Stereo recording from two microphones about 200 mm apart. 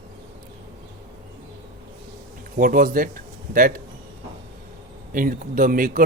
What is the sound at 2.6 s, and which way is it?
A man's voice, 45° right (ahead or behind).